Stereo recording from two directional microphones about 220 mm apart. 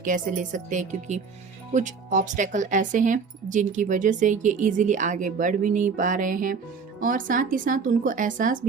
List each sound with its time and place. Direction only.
0.0 s speech: 35° right (ahead or behind)